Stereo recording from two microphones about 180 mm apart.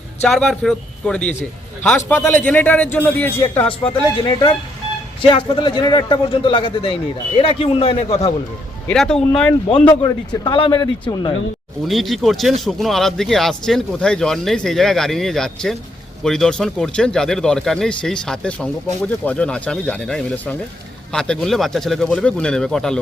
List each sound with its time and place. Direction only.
0.3 s a man's voice: centre (ahead or behind)
3.8 s a man's voice: 25° left (ahead or behind)
8.9 s speech: 5° left (ahead or behind)
9.8 s a man's voice: 25° left (ahead or behind)
11.9 s speech: centre (ahead or behind)